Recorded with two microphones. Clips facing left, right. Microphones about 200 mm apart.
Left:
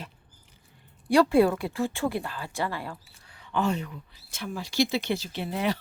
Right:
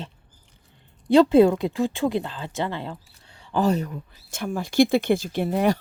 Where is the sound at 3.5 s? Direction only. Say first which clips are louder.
Right 5 dB; 40° right (ahead or behind).